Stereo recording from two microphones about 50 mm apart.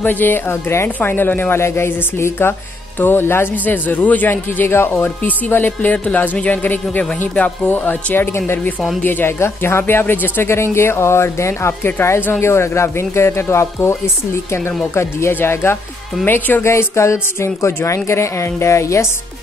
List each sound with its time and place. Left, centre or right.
0.0 s speech: left
0.5 s speech: left
0.8 s a woman's voice: left
3.5 s speech: left
4.3 s a woman's voice: left
5.7 s speech: left
9.0 s speech: left
9.4 s speech: left
16.3 s speech: left
16.6 s a woman's voice: left